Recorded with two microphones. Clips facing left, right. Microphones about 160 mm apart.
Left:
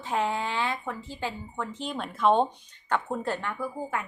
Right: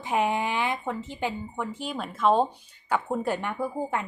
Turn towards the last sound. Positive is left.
turn(degrees=-25)  # may be behind; listen again after turning